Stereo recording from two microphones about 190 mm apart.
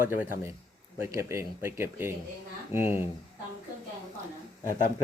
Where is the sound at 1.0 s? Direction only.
15° right (ahead or behind).